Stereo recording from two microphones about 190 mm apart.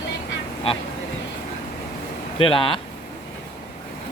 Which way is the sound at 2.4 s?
25° left (ahead or behind).